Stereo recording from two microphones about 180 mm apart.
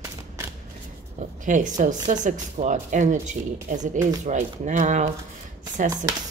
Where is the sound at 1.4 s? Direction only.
45° right (ahead or behind).